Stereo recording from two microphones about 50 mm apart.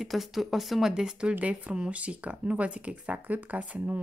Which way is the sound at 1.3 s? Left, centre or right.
Right.